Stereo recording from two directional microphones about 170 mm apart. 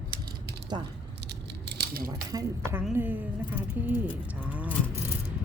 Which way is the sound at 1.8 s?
60° right (ahead or behind).